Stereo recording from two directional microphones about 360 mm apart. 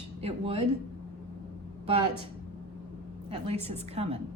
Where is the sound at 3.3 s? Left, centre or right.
Centre.